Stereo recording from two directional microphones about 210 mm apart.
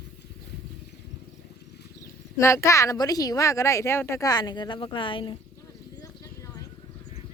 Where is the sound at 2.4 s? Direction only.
15° left (ahead or behind).